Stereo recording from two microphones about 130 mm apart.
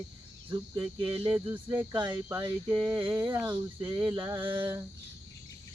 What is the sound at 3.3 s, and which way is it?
Speech, 20° right (ahead or behind).